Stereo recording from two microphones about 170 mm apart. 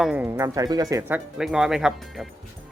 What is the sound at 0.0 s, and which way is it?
Speech, 10° right (ahead or behind).